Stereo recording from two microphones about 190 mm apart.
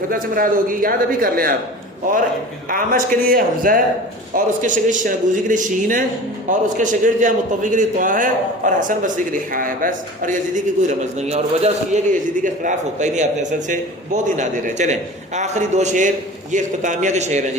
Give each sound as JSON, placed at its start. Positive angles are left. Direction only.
{"t": 0.1, "sound": "a man's voice", "side_deg": -45}
{"t": 2.6, "sound": "a man's voice", "side_deg": -45}